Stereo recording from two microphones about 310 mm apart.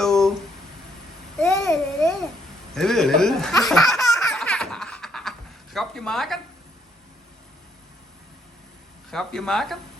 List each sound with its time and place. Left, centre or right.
0.0 s a sound: centre
1.4 s babbling: centre
2.7 s speech: centre
3.6 s baby laughter: centre
5.7 s a sound: centre
9.0 s speech: centre